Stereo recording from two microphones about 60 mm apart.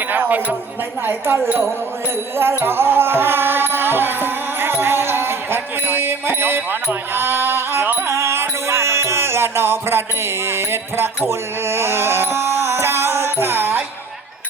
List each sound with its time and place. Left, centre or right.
0.1 s speech: right
1.0 s a woman's voice: right
2.6 s music: right